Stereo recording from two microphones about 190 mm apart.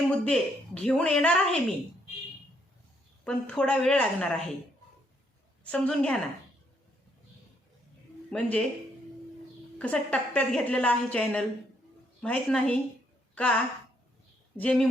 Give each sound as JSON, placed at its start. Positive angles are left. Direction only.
{"t": 0.1, "sound": "a woman's voice", "side_deg": 5}
{"t": 3.2, "sound": "a woman's voice", "side_deg": 5}
{"t": 5.7, "sound": "a woman's voice", "side_deg": 5}
{"t": 8.3, "sound": "a woman's voice", "side_deg": 5}
{"t": 9.7, "sound": "a woman's voice", "side_deg": 5}